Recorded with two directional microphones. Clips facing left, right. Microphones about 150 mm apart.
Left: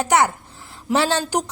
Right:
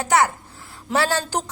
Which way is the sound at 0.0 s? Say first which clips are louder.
Left 1 dB; 20° left (ahead or behind).